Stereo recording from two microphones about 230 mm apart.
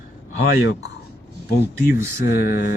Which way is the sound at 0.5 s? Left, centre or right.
Left.